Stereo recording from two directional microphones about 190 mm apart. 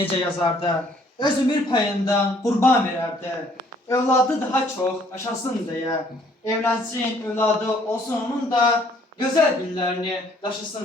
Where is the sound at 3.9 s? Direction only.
10° left (ahead or behind).